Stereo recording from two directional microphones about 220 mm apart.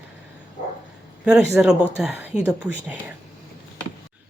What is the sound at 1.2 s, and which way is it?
Speech, 5° right (ahead or behind).